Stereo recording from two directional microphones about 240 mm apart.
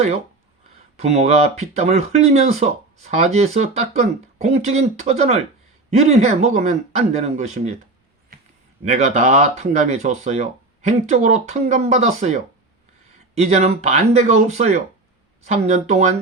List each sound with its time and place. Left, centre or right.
0.9 s speech: right
8.8 s speech: right